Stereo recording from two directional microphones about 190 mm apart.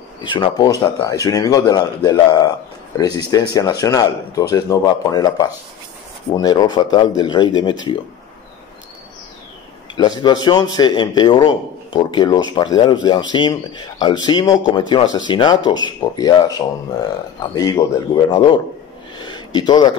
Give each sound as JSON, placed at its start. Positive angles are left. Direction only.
{"t": 0.2, "sound": "speech", "side_deg": 25}
{"t": 9.9, "sound": "speech", "side_deg": 20}
{"t": 19.1, "sound": "a sound", "side_deg": 25}